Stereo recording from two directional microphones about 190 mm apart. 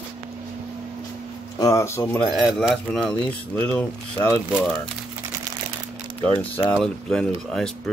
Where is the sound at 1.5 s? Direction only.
15° left (ahead or behind).